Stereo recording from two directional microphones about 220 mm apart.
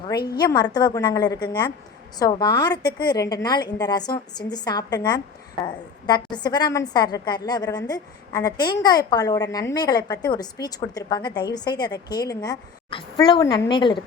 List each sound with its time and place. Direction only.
0.3 s a woman's voice: 20° left (ahead or behind)